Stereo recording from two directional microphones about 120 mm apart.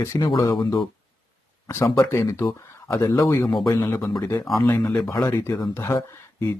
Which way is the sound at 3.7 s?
25° left (ahead or behind).